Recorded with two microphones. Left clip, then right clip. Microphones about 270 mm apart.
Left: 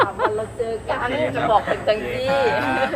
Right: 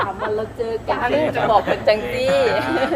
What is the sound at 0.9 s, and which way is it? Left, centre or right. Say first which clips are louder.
Speech: right 5 dB; right.